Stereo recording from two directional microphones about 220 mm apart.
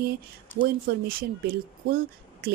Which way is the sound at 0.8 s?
40° right (ahead or behind).